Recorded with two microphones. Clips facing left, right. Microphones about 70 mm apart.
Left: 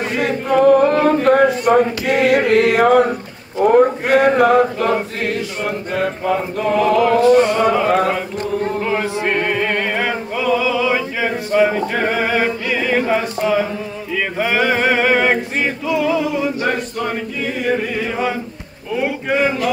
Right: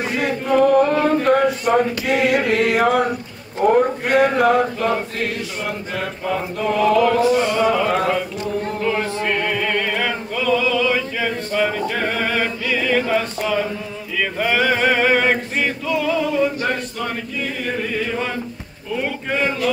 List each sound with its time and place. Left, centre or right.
0.0 s chant: centre
3.6 s mantra: centre
7.7 s a sound: centre
14.4 s male singing: centre
17.6 s chant: centre
18.9 s a sound: centre